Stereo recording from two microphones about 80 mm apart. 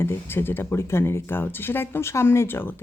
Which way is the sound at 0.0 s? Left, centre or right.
Left.